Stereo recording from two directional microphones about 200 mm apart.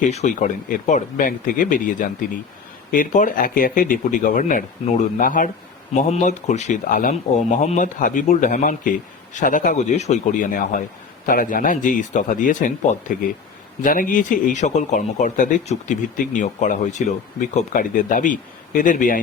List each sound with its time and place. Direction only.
0.1 s speech: 35° left (ahead or behind)